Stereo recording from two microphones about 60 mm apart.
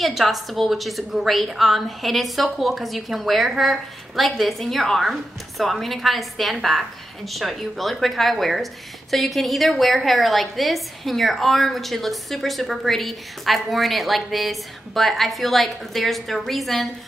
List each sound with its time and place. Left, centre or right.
0.0 s a woman's voice: centre